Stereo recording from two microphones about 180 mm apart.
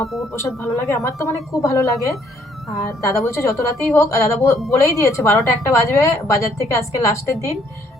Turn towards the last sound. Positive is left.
turn(degrees=15)  # may be behind; listen again after turning